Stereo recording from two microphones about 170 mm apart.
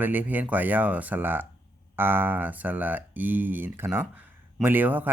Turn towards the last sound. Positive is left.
turn(degrees=-10)  # may be behind; listen again after turning